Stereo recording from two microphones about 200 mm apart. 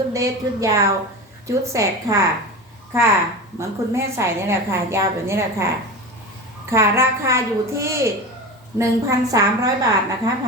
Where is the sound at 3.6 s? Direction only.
15° right (ahead or behind).